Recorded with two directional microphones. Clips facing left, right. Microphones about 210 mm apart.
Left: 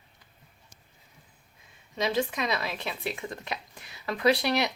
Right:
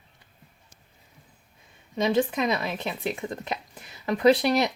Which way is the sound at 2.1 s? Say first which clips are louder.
Right 5 dB; 20° right (ahead or behind).